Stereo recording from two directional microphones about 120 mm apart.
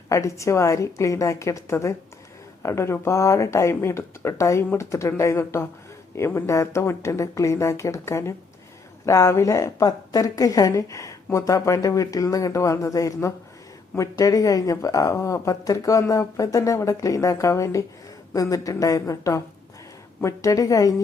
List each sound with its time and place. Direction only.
0.1 s speech: 25° left (ahead or behind)